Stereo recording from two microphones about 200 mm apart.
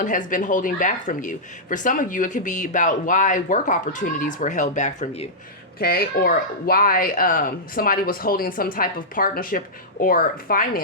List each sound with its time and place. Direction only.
0.0 s speech: 40° left (ahead or behind)
5.8 s speech: 50° left (ahead or behind)